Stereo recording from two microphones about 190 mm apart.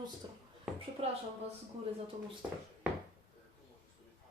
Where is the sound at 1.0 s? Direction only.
30° right (ahead or behind).